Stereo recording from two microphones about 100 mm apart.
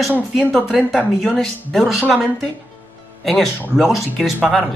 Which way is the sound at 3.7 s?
Centre (ahead or behind).